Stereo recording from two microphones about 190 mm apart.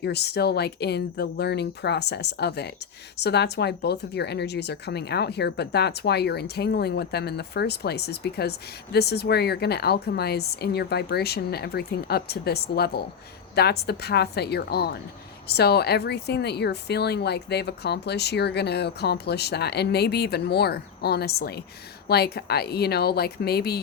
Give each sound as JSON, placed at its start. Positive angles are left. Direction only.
{"t": 0.0, "sound": "speech", "side_deg": 60}